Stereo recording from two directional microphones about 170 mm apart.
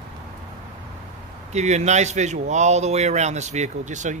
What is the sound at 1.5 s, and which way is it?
Speech, 40° right (ahead or behind).